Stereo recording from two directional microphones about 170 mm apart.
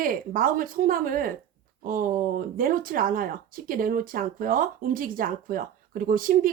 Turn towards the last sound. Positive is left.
turn(degrees=-55)  # may be behind; listen again after turning